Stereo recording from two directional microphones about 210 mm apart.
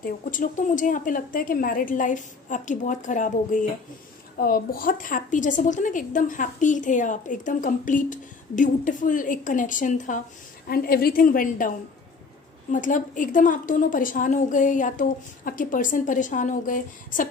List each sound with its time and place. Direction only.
0.0 s a woman's voice: 40° left (ahead or behind)
12.7 s a woman's voice: 40° left (ahead or behind)